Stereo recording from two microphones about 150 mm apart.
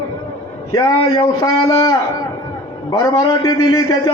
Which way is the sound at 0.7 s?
20° left (ahead or behind).